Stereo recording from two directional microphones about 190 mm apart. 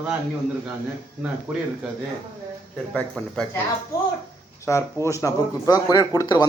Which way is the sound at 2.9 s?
5° left (ahead or behind).